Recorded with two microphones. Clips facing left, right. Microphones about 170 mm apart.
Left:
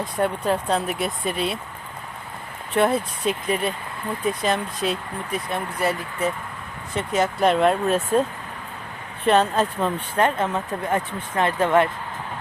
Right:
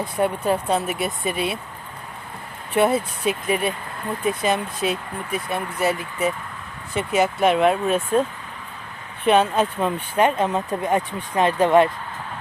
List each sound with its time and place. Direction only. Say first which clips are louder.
0.0 s speech: right 1 dB; 5° right (ahead or behind)
2.7 s speech: right 1 dB; 5° right (ahead or behind)
9.2 s speech: right 1 dB; 5° right (ahead or behind)